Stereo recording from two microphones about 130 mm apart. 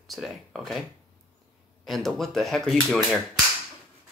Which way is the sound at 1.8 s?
Centre (ahead or behind).